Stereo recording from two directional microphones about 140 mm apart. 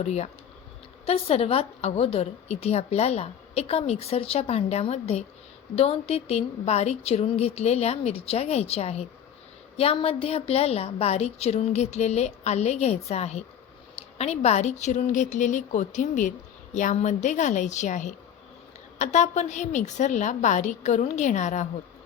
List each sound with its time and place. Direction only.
0.0 s a woman's voice: 50° left (ahead or behind)